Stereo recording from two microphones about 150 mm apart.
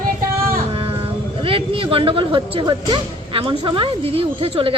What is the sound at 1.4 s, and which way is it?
Speech, 35° right (ahead or behind).